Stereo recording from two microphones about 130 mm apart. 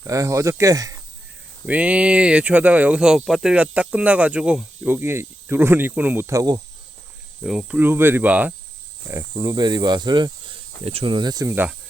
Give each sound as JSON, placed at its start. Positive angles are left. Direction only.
{"t": 0.0, "sound": "speech", "side_deg": -25}
{"t": 1.6, "sound": "speech", "side_deg": -10}
{"t": 7.4, "sound": "cricket", "side_deg": -5}
{"t": 7.8, "sound": "speech", "side_deg": -15}
{"t": 9.4, "sound": "speech", "side_deg": -30}
{"t": 11.5, "sound": "speech", "side_deg": -15}